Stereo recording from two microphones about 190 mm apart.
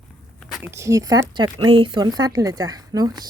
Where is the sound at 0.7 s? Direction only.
15° right (ahead or behind).